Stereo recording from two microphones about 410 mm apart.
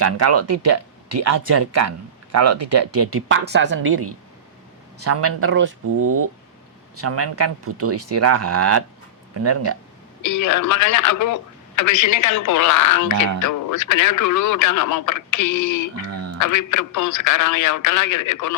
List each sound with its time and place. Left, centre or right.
0.0 s speech: right
6.0 s speech: right
6.9 s speech: right
10.2 s speech: left
16.0 s speech: right
16.5 s speech: left